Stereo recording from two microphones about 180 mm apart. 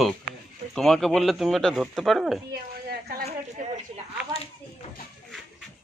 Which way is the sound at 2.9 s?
60° right (ahead or behind).